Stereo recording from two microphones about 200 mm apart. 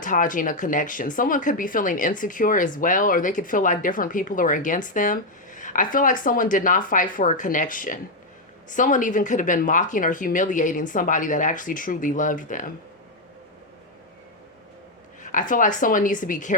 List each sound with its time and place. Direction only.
0.0 s speech: 40° left (ahead or behind)
15.2 s speech: 40° left (ahead or behind)